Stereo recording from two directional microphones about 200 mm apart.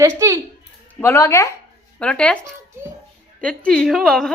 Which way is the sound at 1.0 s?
15° left (ahead or behind).